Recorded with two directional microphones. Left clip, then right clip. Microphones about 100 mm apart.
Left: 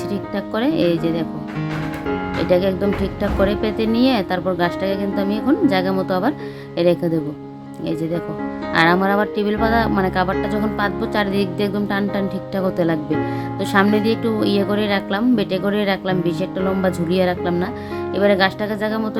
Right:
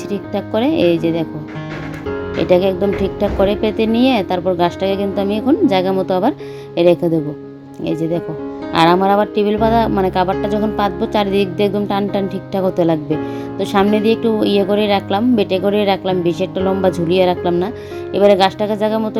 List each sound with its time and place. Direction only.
0.1 s speech: 20° right (ahead or behind)
2.4 s speech: 20° right (ahead or behind)
4.8 s speech: 30° right (ahead or behind)
8.7 s speech: 25° right (ahead or behind)